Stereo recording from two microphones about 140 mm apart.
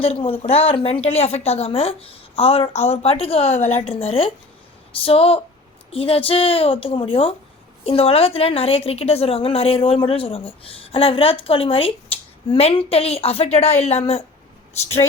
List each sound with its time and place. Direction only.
0.0 s a woman's voice: 45° left (ahead or behind)